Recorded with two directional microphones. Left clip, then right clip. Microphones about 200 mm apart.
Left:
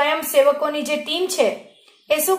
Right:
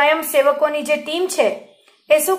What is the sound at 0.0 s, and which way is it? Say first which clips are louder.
A woman's voice: right 2 dB; 15° right (ahead or behind).